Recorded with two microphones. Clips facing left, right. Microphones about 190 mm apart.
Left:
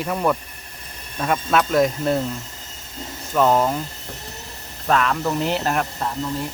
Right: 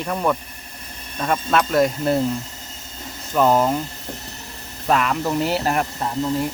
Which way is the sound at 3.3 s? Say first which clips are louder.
Right 1 dB; 5° right (ahead or behind).